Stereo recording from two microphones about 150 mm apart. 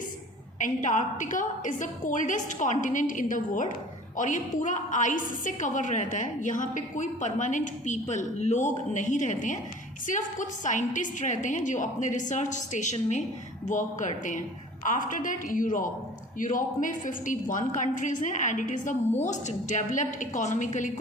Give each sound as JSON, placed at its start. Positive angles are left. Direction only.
{"t": 0.6, "sound": "a woman's voice", "side_deg": 60}